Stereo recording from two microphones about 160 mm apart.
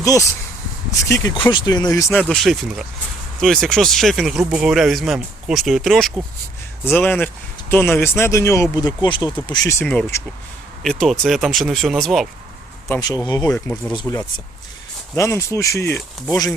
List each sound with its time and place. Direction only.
0.0 s speech: 20° left (ahead or behind)
2.3 s speech: centre (ahead or behind); by 9.7 s 30° left (ahead or behind)
9.7 s speech: 10° left (ahead or behind)
10.8 s speech: centre (ahead or behind)
13.0 s speech: 25° left (ahead or behind)
13.4 s speech: 5° left (ahead or behind)
15.1 s speech: 15° left (ahead or behind)